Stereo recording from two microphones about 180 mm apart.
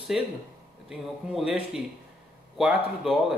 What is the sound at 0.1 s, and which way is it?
Speech, centre (ahead or behind).